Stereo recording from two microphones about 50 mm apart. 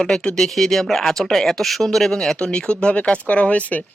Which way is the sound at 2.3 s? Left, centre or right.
Centre.